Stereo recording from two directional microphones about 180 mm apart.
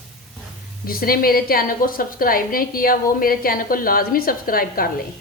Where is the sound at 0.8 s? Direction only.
55° left (ahead or behind).